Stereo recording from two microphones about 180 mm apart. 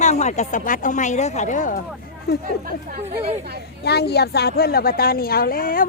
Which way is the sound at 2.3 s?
60° left (ahead or behind).